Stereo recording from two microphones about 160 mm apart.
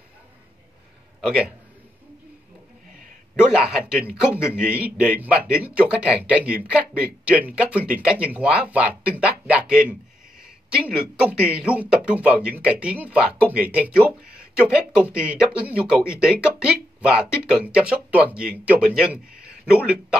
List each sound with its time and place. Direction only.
1.2 s a man's voice: 5° right (ahead or behind)
3.4 s speech: 5° right (ahead or behind)
4.3 s a man's voice: 15° left (ahead or behind)
4.6 s speech: 5° right (ahead or behind)